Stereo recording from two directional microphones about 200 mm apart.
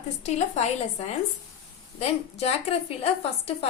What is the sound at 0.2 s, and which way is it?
A woman's voice, 35° left (ahead or behind).